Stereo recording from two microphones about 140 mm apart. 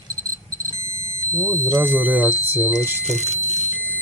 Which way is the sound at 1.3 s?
20° right (ahead or behind).